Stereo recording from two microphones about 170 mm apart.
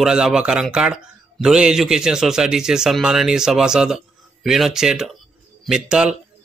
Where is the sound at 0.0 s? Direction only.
5° right (ahead or behind).